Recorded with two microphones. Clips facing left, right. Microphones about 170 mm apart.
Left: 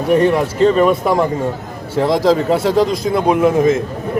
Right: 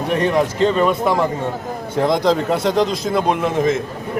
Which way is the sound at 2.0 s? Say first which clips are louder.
Left 3 dB; 5° left (ahead or behind).